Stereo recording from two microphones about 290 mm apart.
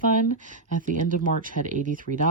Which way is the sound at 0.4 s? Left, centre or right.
Right.